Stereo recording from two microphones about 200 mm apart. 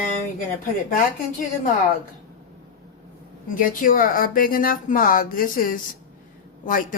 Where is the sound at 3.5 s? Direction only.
45° left (ahead or behind).